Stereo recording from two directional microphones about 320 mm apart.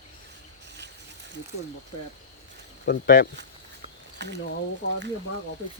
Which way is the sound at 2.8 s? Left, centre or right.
Left.